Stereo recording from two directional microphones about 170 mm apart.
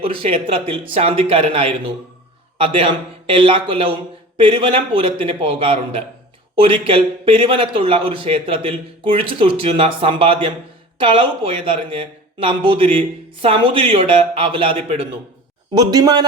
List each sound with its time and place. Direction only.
0.0 s speech: 35° right (ahead or behind)
15.7 s a man's voice: 25° right (ahead or behind)